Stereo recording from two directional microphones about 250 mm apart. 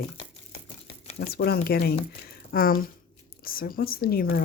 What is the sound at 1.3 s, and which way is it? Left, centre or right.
Speech, left.